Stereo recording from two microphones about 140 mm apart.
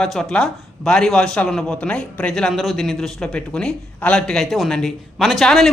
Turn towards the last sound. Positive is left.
turn(degrees=0)  # may be behind; listen again after turning